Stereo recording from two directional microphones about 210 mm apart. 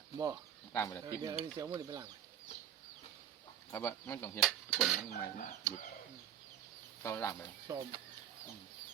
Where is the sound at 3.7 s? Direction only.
10° left (ahead or behind).